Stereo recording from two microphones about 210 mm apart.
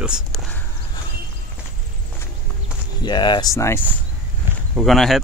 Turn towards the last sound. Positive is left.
turn(degrees=0)  # may be behind; listen again after turning